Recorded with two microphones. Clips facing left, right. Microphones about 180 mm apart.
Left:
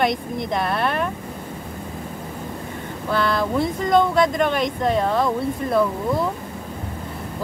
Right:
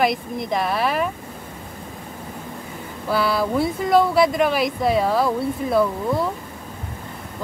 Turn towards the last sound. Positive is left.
turn(degrees=-5)  # may be behind; listen again after turning